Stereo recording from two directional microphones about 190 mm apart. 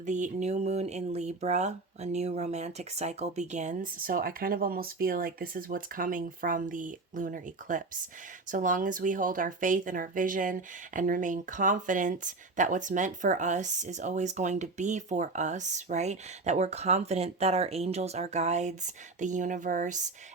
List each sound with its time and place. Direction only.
0.0 s speech: 40° right (ahead or behind)